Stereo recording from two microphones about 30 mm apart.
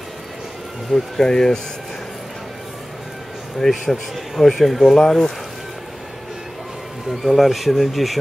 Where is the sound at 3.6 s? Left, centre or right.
Centre.